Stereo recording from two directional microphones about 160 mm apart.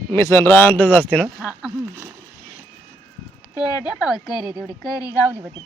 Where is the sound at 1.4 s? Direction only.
5° right (ahead or behind).